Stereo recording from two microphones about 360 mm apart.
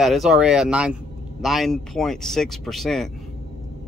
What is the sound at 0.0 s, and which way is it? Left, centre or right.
Speech, centre.